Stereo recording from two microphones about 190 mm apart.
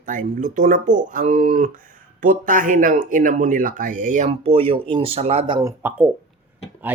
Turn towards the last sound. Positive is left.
turn(degrees=-10)  # may be behind; listen again after turning